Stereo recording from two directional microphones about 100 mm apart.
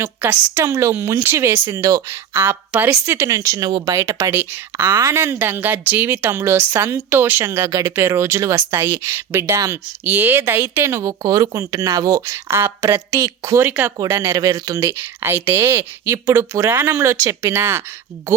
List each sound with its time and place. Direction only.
0.0 s speech: 25° right (ahead or behind)
2.7 s a woman's voice: 10° right (ahead or behind)
3.1 s speech: 30° right (ahead or behind)
10.0 s speech: 20° right (ahead or behind)
14.3 s speech: 40° right (ahead or behind)
14.8 s speech: 20° right (ahead or behind)